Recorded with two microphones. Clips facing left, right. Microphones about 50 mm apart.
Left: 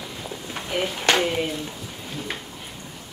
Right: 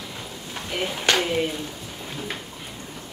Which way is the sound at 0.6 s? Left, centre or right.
Centre.